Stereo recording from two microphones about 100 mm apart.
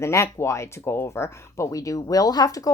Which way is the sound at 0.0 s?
30° left (ahead or behind).